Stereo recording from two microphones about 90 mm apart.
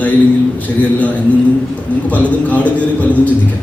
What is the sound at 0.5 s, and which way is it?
Speech, 15° left (ahead or behind).